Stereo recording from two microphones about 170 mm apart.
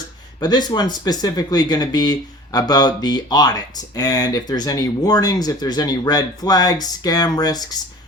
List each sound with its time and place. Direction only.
0.3 s speech: 25° left (ahead or behind)